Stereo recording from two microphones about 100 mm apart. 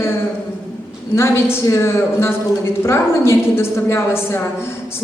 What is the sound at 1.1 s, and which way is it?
A man's voice, 25° left (ahead or behind).